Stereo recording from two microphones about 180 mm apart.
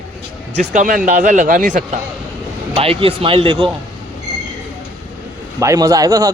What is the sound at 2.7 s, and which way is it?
Speech, 30° right (ahead or behind).